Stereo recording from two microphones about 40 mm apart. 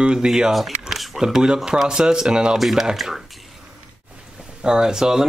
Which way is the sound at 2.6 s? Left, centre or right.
Centre.